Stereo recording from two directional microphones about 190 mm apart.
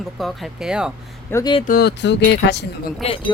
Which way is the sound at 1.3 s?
20° left (ahead or behind).